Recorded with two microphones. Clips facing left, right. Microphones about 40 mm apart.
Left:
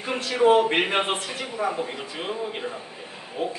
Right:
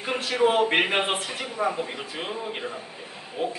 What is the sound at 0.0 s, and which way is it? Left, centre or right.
A man's voice, centre.